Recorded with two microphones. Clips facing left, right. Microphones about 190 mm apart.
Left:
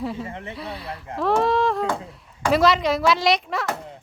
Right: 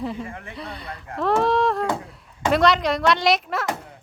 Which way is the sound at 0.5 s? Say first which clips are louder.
Left 2 dB; 5° left (ahead or behind).